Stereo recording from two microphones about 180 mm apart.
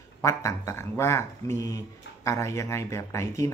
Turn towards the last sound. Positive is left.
turn(degrees=15)  # may be behind; listen again after turning